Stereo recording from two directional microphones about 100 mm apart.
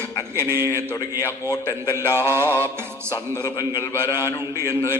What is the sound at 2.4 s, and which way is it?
Music, 20° left (ahead or behind).